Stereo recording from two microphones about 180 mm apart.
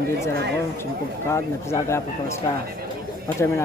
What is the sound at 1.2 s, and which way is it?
Speech, 15° left (ahead or behind).